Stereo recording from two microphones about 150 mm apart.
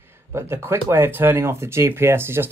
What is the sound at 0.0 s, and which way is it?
Speech, 15° right (ahead or behind).